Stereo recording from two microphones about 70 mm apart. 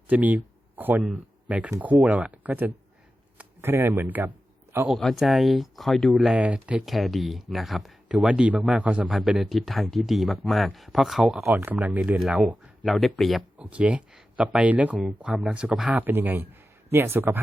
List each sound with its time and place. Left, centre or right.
0.1 s speech: right
4.9 s speech: centre
6.3 s speech: centre
6.8 s speech: centre
8.1 s speech: centre
9.0 s speech: centre
11.4 s speech: right
11.7 s speech: right
12.8 s speech: centre
13.6 s speech: centre
15.0 s speech: centre
16.0 s speech: right